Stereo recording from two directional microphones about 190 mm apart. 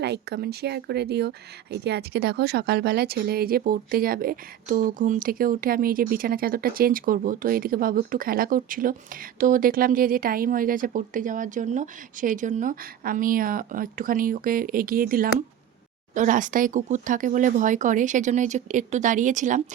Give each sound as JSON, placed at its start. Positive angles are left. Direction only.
{"t": 0.0, "sound": "speech", "side_deg": -60}